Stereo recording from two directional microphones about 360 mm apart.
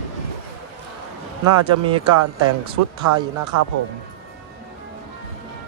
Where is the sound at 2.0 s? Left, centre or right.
Right.